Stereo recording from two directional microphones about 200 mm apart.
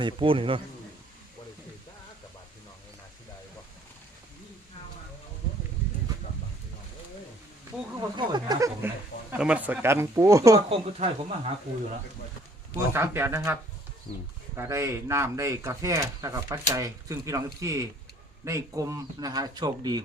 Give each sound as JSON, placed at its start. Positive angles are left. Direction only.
{"t": 0.0, "sound": "a man's voice", "side_deg": -25}
{"t": 8.1, "sound": "speech", "side_deg": -20}
{"t": 9.3, "sound": "speech", "side_deg": -5}
{"t": 10.7, "sound": "a man's voice", "side_deg": -30}
{"t": 12.9, "sound": "speech", "side_deg": -10}
{"t": 14.1, "sound": "speech", "side_deg": 30}
{"t": 14.5, "sound": "a man's voice", "side_deg": -15}